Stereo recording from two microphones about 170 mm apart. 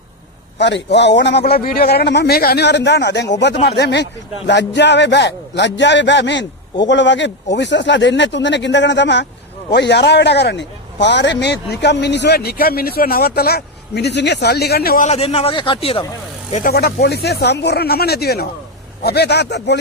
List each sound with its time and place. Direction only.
0.6 s a man's voice: 90° left; by 15.0 s 65° left (ahead or behind)
15.0 s a man's voice: 35° left (ahead or behind)
16.5 s speech: 45° left (ahead or behind)
16.7 s speech: 70° left (ahead or behind); by 19.8 s 85° left